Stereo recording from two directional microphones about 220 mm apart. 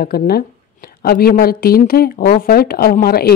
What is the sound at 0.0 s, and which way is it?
A woman's voice, 45° left (ahead or behind).